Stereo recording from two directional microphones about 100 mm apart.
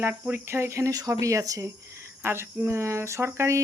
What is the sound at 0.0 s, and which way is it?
Speech, 20° right (ahead or behind).